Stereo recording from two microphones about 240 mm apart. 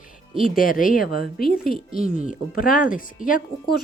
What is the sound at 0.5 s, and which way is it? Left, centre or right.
Speech, left.